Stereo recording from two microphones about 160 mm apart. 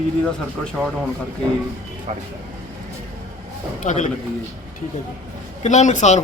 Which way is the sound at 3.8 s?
50° left (ahead or behind).